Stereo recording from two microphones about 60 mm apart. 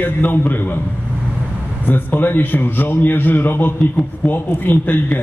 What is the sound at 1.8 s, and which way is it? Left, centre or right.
A man's voice, left.